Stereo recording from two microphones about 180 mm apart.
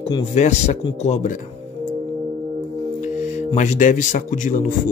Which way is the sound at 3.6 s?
45° left (ahead or behind).